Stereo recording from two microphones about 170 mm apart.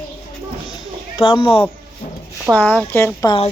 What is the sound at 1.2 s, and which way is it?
Speech, 30° left (ahead or behind).